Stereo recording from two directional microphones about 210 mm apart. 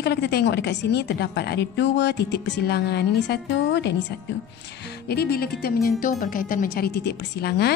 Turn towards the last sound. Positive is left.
turn(degrees=50)  # may be behind; listen again after turning